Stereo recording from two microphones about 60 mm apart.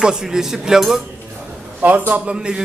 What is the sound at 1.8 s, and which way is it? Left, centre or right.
Speech, right.